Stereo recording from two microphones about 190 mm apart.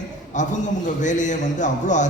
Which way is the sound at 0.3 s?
40° left (ahead or behind).